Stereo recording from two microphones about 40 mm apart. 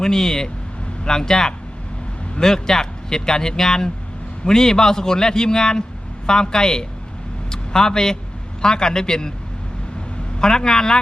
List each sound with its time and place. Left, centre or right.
0.0 s a man's voice: centre
10.4 s a man's voice: centre